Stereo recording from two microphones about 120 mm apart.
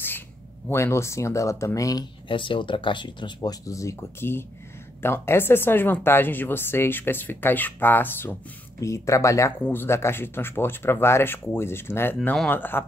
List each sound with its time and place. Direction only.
0.7 s speech: 20° left (ahead or behind)
2.2 s speech: 45° left (ahead or behind)
3.3 s speech: 25° left (ahead or behind)